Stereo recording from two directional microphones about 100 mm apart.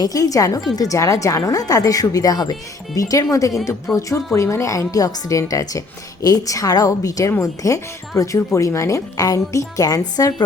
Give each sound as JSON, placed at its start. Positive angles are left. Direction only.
{"t": 0.0, "sound": "a woman's voice", "side_deg": 40}
{"t": 3.9, "sound": "speech", "side_deg": 5}
{"t": 4.4, "sound": "a woman's voice", "side_deg": 30}